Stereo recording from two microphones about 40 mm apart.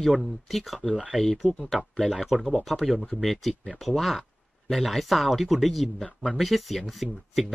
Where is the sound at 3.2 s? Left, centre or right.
Centre.